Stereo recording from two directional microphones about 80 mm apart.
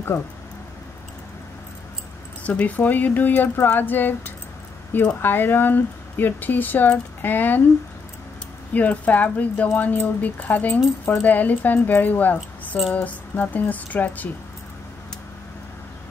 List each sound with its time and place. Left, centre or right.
0.1 s speech: left
2.4 s speech: centre
8.7 s speech: centre
12.4 s speech: centre
12.9 s speech: centre